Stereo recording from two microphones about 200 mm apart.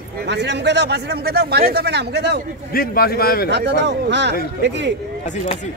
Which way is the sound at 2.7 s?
50° left (ahead or behind).